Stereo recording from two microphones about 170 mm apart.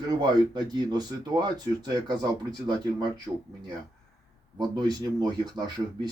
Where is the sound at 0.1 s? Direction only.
25° right (ahead or behind).